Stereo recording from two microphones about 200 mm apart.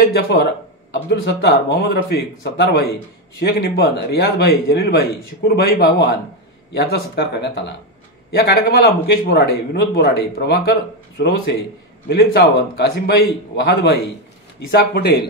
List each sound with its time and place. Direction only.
0.0 s a man's voice: 55° left (ahead or behind)